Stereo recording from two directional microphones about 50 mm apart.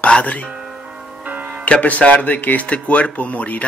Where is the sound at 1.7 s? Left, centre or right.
Left.